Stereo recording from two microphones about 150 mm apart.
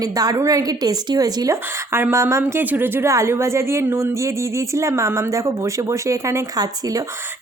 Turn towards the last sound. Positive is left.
turn(degrees=-25)  # may be behind; listen again after turning